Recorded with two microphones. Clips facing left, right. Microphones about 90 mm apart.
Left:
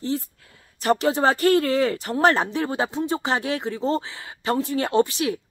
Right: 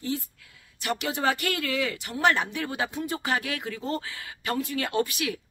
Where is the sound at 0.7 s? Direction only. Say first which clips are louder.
Left 9 dB; 35° left (ahead or behind).